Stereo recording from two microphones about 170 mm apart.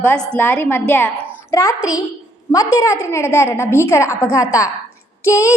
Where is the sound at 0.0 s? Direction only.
10° left (ahead or behind).